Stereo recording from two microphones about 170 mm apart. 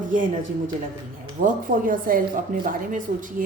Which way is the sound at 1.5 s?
55° right (ahead or behind).